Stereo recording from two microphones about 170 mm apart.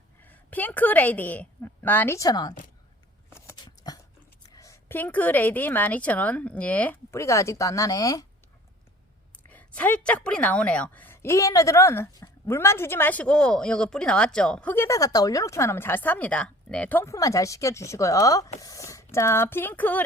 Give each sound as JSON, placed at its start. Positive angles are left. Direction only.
{"t": 0.2, "sound": "a woman's voice", "side_deg": 10}
{"t": 3.3, "sound": "biting", "side_deg": 20}
{"t": 4.4, "sound": "a woman's voice", "side_deg": 20}
{"t": 9.5, "sound": "a woman's voice", "side_deg": 10}